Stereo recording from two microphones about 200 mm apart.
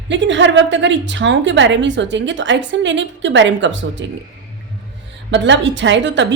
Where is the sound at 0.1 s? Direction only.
65° right (ahead or behind).